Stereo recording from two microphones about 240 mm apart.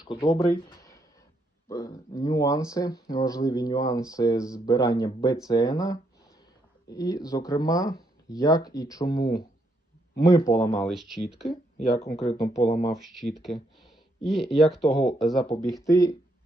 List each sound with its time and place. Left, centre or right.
0.0 s speech: centre
10.8 s speech: centre
11.9 s speech: left
12.9 s speech: centre
15.8 s speech: centre